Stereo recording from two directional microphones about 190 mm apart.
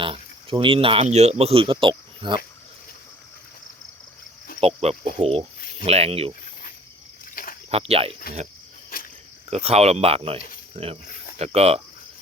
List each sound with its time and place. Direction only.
0.0 s speech: 25° right (ahead or behind)
4.6 s speech: 35° right (ahead or behind)
7.4 s rowboat: 50° left (ahead or behind)
7.7 s speech: 30° right (ahead or behind)
8.9 s pig: 50° left (ahead or behind)
9.5 s speech: 35° right (ahead or behind)